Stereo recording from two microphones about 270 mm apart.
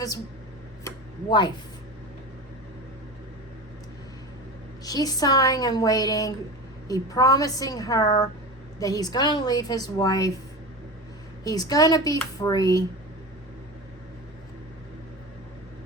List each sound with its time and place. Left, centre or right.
0.9 s a sound: centre
4.9 s a woman's voice: centre
11.4 s a woman's voice: centre